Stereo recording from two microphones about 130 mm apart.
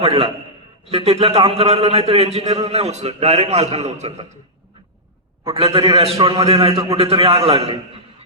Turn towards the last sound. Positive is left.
turn(degrees=-45)  # may be behind; listen again after turning